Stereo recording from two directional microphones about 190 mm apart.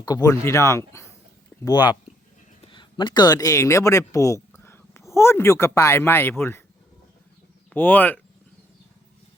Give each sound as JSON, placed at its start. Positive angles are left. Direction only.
{"t": 0.0, "sound": "speech", "side_deg": 20}
{"t": 7.7, "sound": "speech", "side_deg": 10}